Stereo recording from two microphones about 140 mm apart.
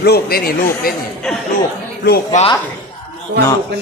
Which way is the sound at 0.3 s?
90° left.